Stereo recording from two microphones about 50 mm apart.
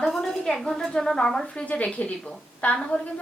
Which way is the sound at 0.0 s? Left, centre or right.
Centre.